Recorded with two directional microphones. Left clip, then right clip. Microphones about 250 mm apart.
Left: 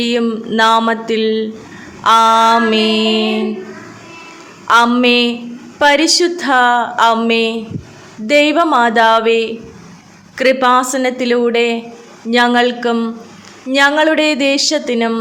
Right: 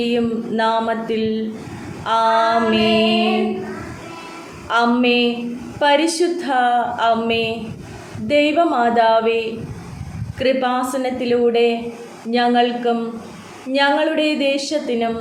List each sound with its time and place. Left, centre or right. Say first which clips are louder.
0.0 s a woman's voice: left 4 dB; left
4.7 s a woman's voice: left 6 dB; left